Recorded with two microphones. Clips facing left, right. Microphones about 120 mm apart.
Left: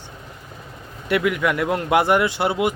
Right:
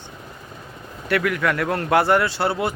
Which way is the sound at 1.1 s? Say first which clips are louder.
Left 1 dB; 15° left (ahead or behind).